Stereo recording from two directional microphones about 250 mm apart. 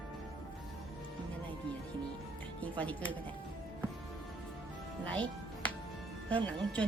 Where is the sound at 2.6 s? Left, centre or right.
Centre.